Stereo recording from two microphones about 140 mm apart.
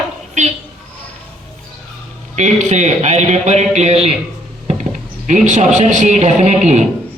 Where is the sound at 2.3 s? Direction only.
60° right (ahead or behind).